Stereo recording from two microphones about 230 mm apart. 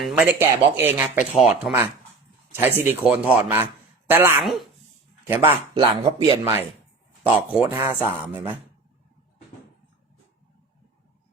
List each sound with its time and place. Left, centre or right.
0.0 s speech: centre
5.7 s speech: right